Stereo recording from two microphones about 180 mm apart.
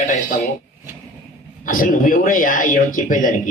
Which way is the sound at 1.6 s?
50° left (ahead or behind).